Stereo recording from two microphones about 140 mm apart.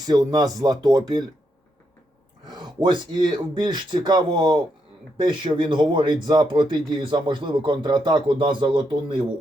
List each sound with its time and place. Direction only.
0.0 s speech: 25° right (ahead or behind)
2.5 s speech: 30° right (ahead or behind)